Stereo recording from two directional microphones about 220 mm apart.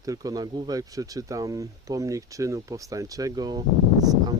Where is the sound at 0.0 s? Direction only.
15° right (ahead or behind).